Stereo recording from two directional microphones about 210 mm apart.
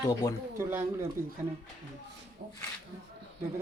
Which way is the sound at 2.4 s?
45° right (ahead or behind).